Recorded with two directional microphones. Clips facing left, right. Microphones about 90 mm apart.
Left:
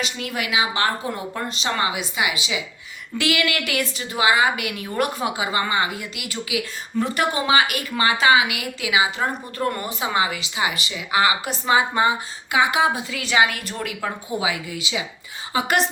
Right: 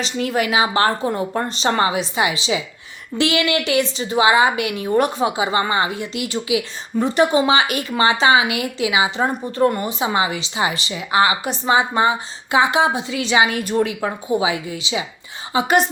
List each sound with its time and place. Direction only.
0.0 s a woman's voice: 35° right (ahead or behind)